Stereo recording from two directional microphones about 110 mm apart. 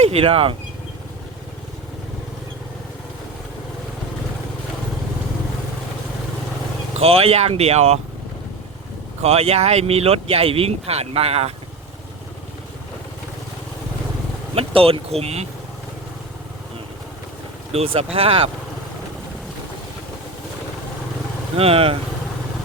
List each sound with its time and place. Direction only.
0.0 s speech: 65° right (ahead or behind)
6.9 s speech: 65° right (ahead or behind)
9.2 s speech: 70° right (ahead or behind)
14.5 s speech: 60° right (ahead or behind)
15.2 s speech: 70° right (ahead or behind)
17.7 s speech: 65° right (ahead or behind)
21.5 s speech: 60° right (ahead or behind)